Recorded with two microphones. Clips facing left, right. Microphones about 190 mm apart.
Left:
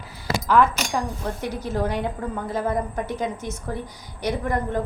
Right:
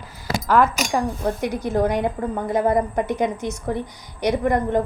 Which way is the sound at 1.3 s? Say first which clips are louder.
Right 3 dB; 15° right (ahead or behind).